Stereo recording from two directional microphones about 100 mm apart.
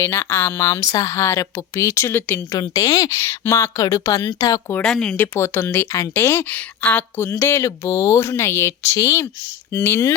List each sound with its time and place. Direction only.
0.0 s a woman's voice: 25° left (ahead or behind)
2.5 s a woman's voice: 35° left (ahead or behind)
4.8 s speech: 5° left (ahead or behind)
5.1 s a woman's voice: 25° left (ahead or behind)